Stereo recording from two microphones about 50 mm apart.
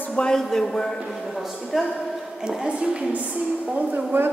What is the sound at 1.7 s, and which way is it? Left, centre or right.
Speech, centre.